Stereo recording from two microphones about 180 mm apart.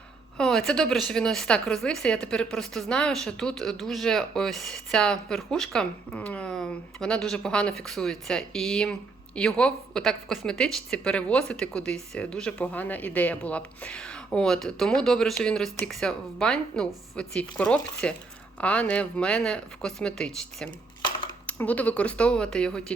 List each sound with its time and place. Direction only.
0.3 s a woman's voice: 5° left (ahead or behind)